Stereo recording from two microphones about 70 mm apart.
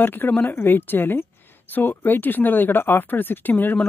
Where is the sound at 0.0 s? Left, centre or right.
Left.